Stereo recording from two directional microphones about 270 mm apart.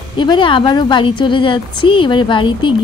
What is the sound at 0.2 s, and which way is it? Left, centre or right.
A woman's voice, centre.